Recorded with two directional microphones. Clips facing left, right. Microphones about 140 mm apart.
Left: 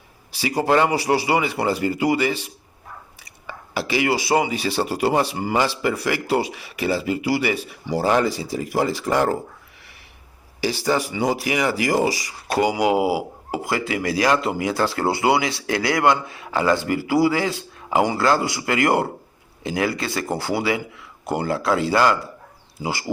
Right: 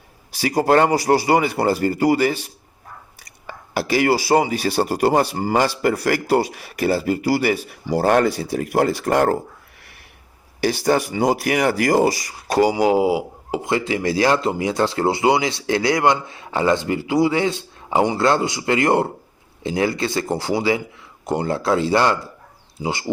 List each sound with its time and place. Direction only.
0.3 s speech: 45° right (ahead or behind)
10.6 s speech: 55° right (ahead or behind)
12.5 s speech: 30° right (ahead or behind)